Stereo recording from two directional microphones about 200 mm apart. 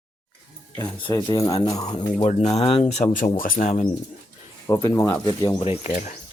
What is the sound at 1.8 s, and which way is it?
Speech, 35° left (ahead or behind).